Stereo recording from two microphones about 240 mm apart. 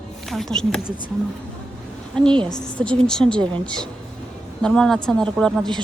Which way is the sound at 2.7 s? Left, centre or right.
Centre.